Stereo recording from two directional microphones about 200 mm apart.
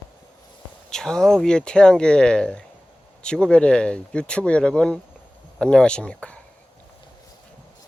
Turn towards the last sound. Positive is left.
turn(degrees=5)  # may be behind; listen again after turning